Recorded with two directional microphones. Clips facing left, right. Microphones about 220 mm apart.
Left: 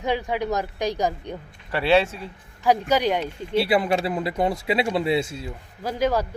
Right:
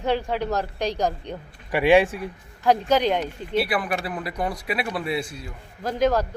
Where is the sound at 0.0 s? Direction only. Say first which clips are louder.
Right 1 dB; 15° left (ahead or behind).